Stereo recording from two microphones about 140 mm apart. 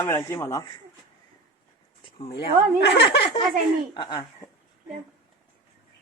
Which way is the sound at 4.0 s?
30° left (ahead or behind).